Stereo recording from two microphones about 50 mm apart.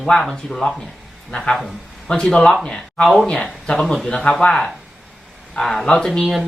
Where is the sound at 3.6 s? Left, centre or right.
Centre.